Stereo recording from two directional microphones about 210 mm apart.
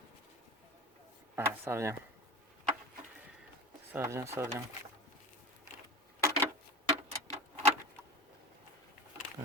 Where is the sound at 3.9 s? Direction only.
10° right (ahead or behind).